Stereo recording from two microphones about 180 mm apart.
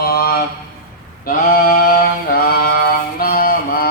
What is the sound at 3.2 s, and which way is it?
Mantra, 55° left (ahead or behind).